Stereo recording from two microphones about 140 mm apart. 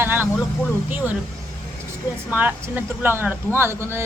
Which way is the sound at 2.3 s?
10° right (ahead or behind).